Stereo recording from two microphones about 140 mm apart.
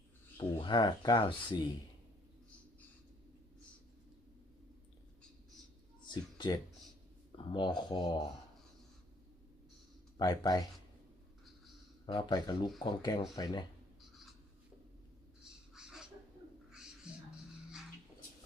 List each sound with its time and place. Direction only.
0.3 s speech: 35° left (ahead or behind)
6.1 s speech: 30° left (ahead or behind)
10.2 s speech: 30° left (ahead or behind)
12.0 s speech: 30° left (ahead or behind)
15.7 s a sound: 5° right (ahead or behind)
16.7 s music: 5° right (ahead or behind)